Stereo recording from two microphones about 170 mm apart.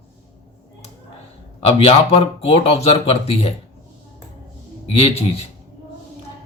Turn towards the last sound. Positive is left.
turn(degrees=35)  # may be behind; listen again after turning